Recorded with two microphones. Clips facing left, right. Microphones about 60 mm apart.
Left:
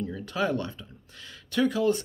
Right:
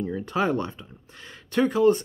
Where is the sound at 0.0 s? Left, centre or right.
Right.